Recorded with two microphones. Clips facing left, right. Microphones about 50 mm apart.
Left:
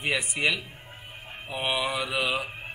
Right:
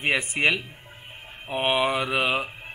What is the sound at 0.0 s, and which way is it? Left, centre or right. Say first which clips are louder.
Speech: right 4 dB; right.